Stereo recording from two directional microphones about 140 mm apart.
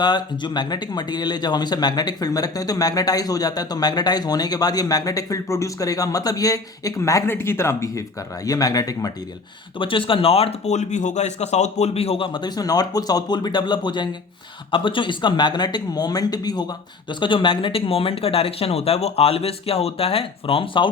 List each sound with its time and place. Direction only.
0.0 s speech: 30° left (ahead or behind)
9.7 s speech: 40° left (ahead or behind)